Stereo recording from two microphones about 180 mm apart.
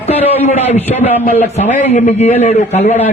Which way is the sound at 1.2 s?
45° left (ahead or behind).